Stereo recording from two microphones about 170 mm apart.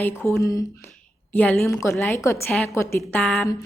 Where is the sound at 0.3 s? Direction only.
20° left (ahead or behind).